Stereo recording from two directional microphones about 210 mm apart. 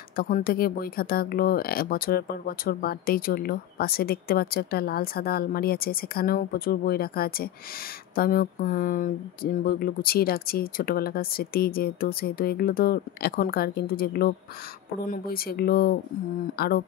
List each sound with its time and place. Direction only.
0.1 s speech: 45° left (ahead or behind)